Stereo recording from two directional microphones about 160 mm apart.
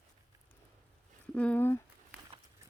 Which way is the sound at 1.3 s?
10° left (ahead or behind).